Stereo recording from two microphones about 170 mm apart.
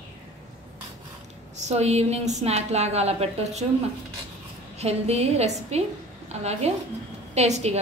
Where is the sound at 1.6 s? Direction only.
40° right (ahead or behind).